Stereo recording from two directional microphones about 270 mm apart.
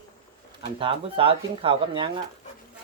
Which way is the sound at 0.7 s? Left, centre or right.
Centre.